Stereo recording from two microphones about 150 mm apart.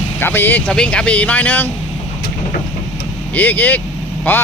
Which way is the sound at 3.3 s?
10° left (ahead or behind).